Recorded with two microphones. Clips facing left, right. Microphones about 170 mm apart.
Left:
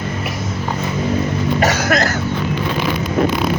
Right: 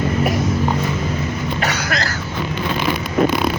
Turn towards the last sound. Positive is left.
turn(degrees=45)  # may be behind; listen again after turning